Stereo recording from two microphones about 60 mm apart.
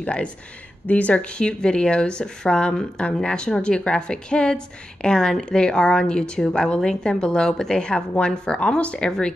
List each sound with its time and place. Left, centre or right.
0.0 s a woman's voice: left